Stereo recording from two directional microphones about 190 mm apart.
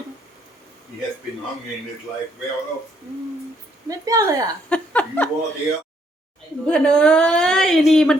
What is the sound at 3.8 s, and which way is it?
Speech, 20° right (ahead or behind).